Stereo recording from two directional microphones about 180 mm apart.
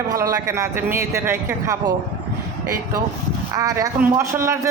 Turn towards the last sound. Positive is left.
turn(degrees=-15)  # may be behind; listen again after turning